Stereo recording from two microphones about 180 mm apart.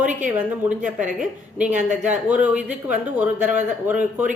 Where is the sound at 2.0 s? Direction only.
10° right (ahead or behind).